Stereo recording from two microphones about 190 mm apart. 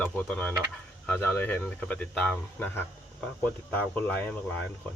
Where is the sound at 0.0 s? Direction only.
10° left (ahead or behind).